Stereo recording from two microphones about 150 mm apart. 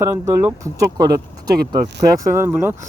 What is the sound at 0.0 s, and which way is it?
Speech, 15° right (ahead or behind).